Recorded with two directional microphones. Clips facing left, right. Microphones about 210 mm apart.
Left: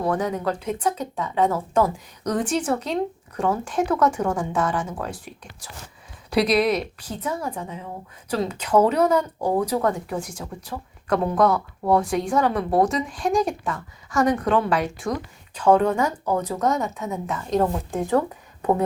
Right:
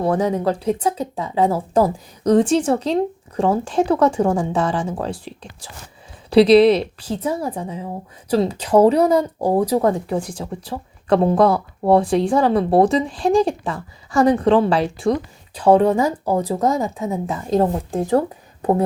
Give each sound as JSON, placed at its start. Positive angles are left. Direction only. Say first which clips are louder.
{"t": 0.0, "sound": "a woman's voice", "louder": "right 5 dB", "side_deg": -30}